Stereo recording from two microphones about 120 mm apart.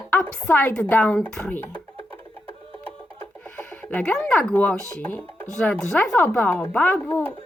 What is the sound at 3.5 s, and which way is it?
A woman's voice, 10° left (ahead or behind).